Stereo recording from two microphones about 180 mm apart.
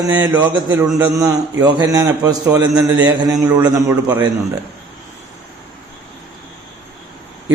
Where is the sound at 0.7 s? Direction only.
15° right (ahead or behind).